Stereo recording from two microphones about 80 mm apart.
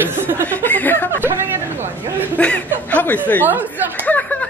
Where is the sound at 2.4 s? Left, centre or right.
Centre.